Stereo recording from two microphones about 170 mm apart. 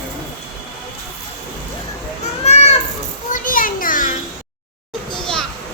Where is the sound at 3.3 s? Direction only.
55° left (ahead or behind).